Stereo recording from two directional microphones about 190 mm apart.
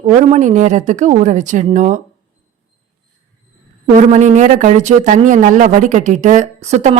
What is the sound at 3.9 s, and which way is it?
Speech, 40° right (ahead or behind).